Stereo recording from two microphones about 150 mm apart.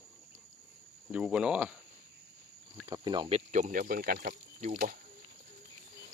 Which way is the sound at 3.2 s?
50° right (ahead or behind).